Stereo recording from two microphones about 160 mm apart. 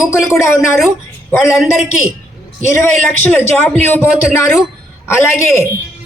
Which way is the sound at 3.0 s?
10° left (ahead or behind).